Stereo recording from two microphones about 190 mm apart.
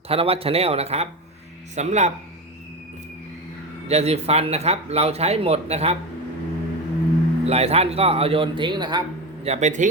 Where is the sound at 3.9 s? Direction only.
35° right (ahead or behind).